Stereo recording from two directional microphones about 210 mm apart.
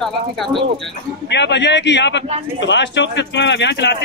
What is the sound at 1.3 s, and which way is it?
A man's voice, 55° left (ahead or behind).